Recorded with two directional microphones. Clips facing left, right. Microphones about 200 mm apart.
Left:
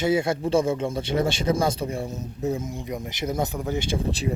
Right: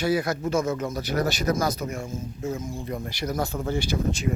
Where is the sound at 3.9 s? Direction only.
30° left (ahead or behind).